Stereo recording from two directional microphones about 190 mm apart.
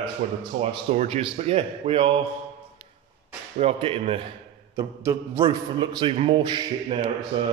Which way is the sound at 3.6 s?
30° right (ahead or behind).